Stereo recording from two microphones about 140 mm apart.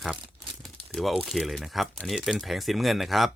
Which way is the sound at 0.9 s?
Centre (ahead or behind).